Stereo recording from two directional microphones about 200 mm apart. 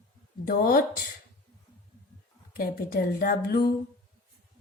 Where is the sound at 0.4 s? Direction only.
50° left (ahead or behind).